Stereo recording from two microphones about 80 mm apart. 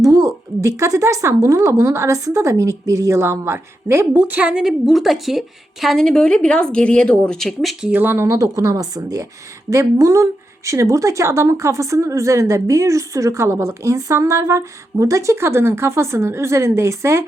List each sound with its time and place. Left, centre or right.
0.0 s a sound: right
1.5 s speech: right
4.3 s a woman's voice: centre
4.6 s a woman's voice: centre
7.9 s speech: right
8.4 s a woman's voice: right